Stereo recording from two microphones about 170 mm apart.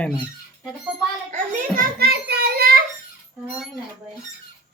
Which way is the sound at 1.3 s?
60° right (ahead or behind).